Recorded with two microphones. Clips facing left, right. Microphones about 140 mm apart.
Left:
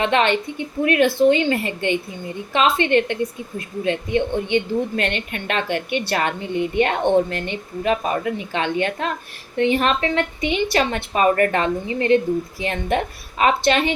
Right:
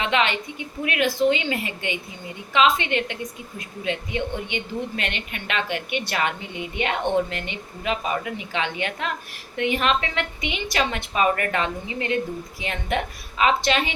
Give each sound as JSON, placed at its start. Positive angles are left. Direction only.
{"t": 0.0, "sound": "a woman's voice", "side_deg": 40}